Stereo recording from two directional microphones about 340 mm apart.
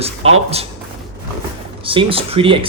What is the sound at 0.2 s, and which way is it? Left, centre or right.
Speech, centre.